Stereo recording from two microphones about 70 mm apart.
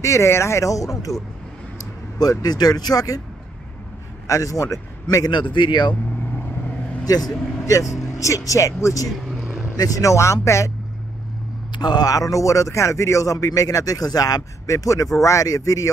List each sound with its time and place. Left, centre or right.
0.0 s a man's voice: left
2.1 s speech: left
4.3 s a man's voice: left
7.6 s a man's voice: left
11.8 s a man's voice: left